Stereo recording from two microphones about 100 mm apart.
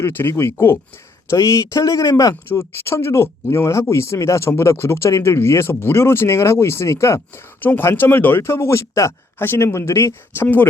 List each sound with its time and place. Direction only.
0.0 s speech: 25° left (ahead or behind)